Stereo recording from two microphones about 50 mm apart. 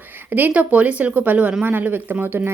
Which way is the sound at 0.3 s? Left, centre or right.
Right.